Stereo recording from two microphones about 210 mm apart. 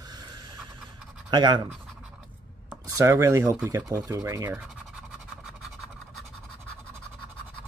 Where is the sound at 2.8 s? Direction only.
15° right (ahead or behind).